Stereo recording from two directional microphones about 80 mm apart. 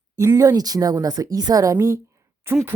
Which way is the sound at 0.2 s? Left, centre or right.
Right.